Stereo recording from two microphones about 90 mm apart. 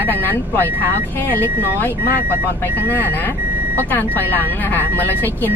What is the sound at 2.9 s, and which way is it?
Speech, 20° left (ahead or behind).